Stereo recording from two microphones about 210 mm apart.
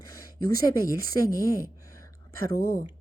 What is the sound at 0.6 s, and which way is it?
A woman's voice, 15° left (ahead or behind).